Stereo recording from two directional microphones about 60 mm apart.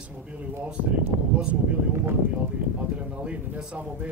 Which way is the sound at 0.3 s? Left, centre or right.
Right.